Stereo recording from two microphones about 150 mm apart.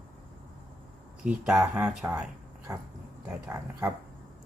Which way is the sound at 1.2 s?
5° right (ahead or behind).